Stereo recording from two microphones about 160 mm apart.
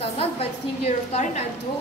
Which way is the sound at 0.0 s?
40° left (ahead or behind).